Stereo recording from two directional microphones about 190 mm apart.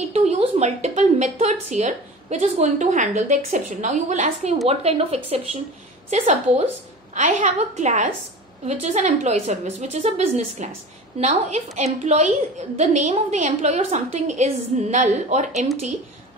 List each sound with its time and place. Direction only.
0.1 s a woman's voice: 35° right (ahead or behind)